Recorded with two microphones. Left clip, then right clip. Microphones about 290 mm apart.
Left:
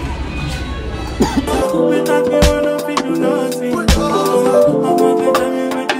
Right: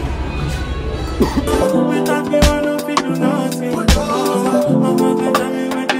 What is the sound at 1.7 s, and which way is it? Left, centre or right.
Music, centre.